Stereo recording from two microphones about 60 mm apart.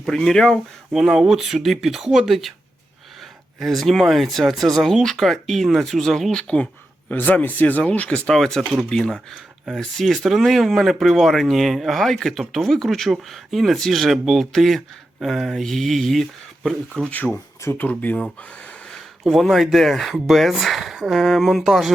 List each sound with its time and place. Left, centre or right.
0.1 s speech: centre
0.9 s speech: centre
3.6 s speech: centre
7.1 s speech: left
8.3 s speech: centre
9.7 s speech: centre
17.3 s speech: left
17.8 s speech: left
19.2 s speech: centre